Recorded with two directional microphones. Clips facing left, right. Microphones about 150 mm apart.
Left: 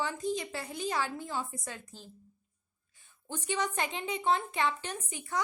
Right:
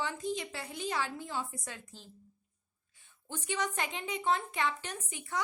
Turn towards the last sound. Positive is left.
turn(degrees=40)  # may be behind; listen again after turning